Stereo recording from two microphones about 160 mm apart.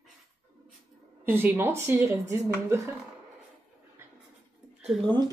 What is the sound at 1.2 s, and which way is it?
A woman's voice, 15° right (ahead or behind).